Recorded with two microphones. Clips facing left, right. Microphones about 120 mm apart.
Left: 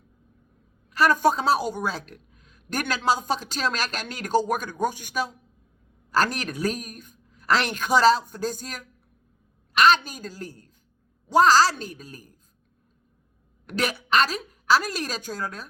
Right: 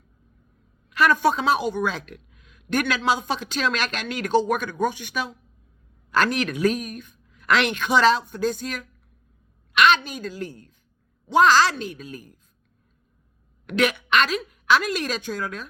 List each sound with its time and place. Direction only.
0.9 s a woman's voice: 40° left (ahead or behind)
13.7 s a woman's voice: 40° left (ahead or behind)